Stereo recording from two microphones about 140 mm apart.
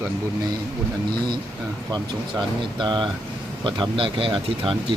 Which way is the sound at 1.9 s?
30° right (ahead or behind).